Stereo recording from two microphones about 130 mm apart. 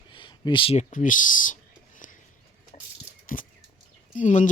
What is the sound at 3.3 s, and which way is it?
Speech, 90° left.